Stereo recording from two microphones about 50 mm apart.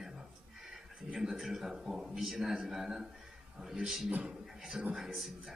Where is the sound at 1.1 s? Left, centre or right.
Centre.